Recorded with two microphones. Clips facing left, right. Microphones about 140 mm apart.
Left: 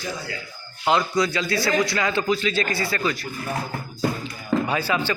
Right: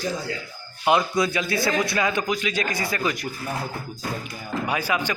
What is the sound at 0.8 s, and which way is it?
A man's voice, 20° right (ahead or behind).